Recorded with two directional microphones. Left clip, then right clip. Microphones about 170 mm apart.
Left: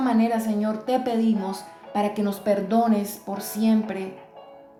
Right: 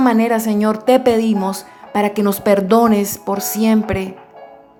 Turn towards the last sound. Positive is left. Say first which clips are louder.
# right 8 dB
turn(degrees=-45)  # may be behind; listen again after turning